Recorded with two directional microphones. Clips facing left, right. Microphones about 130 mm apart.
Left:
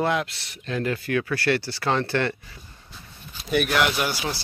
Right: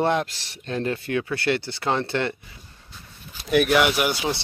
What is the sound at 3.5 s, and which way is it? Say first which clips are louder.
Speech: right 3 dB; 5° right (ahead or behind).